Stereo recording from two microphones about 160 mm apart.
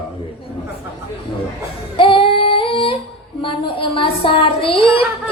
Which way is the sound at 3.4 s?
35° left (ahead or behind).